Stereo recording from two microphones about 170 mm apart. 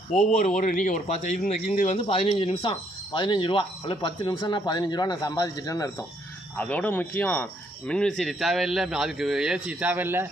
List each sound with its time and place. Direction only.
0.1 s speech: 50° left (ahead or behind); by 6.1 s 20° left (ahead or behind)
6.6 s speech: 10° left (ahead or behind); by 10.2 s 10° right (ahead or behind)